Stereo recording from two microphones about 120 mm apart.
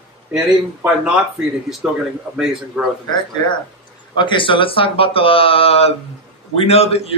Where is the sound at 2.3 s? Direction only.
5° right (ahead or behind).